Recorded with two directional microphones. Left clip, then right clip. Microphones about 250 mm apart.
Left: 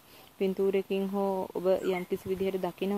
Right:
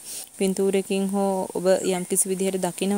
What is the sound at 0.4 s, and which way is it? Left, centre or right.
Speech, right.